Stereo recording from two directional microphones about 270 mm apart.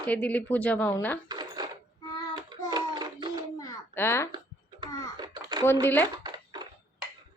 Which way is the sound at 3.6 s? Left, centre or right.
Centre.